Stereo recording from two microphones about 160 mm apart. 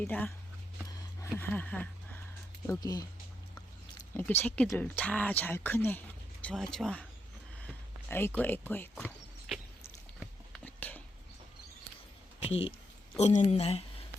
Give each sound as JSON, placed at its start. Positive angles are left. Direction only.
{"t": 0.0, "sound": "speech", "side_deg": 10}
{"t": 1.4, "sound": "speech", "side_deg": 10}
{"t": 2.6, "sound": "speech", "side_deg": 20}
{"t": 4.1, "sound": "speech", "side_deg": 15}
{"t": 7.6, "sound": "a sound", "side_deg": 10}
{"t": 8.7, "sound": "speech", "side_deg": 10}
{"t": 9.5, "sound": "walk", "side_deg": 0}
{"t": 10.6, "sound": "a sound", "side_deg": 10}
{"t": 12.5, "sound": "a woman's voice", "side_deg": 40}